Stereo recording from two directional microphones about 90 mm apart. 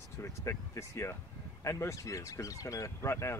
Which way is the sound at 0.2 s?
30° left (ahead or behind).